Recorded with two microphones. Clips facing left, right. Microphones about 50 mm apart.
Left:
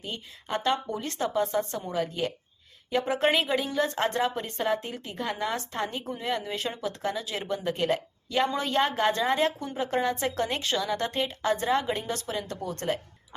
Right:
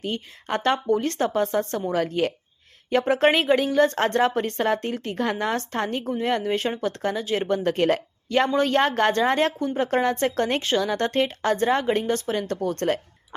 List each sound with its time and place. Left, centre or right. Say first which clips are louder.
0.4 s speech: right 5 dB; right
0.9 s a woman's voice: right 5 dB; right
1.9 s a woman's voice: right 6 dB; right
7.4 s speech: right 6 dB; right
8.5 s a woman's voice: right 6 dB; right
10.8 s a woman's voice: right 6 dB; right